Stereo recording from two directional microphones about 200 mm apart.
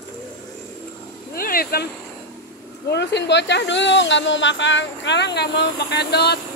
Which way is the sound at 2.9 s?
60° left (ahead or behind).